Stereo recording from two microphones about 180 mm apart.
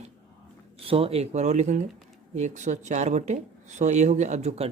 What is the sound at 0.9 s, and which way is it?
Speech, 30° right (ahead or behind).